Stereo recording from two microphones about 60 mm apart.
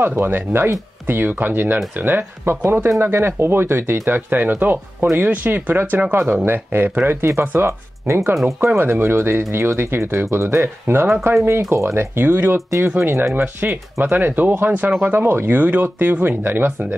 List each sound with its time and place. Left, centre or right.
0.0 s speech: right
7.6 s speech: right
14.1 s speech: right